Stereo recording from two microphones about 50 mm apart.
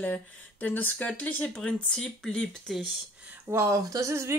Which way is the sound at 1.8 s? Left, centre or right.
Centre.